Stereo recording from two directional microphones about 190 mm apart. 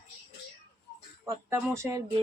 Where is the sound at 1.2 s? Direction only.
15° right (ahead or behind).